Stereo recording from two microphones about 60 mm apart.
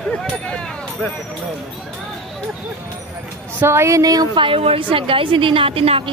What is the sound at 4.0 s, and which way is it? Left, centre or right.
Speech, right.